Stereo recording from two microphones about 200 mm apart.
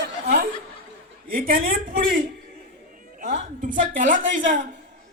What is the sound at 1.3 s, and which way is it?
A woman's voice, 45° right (ahead or behind).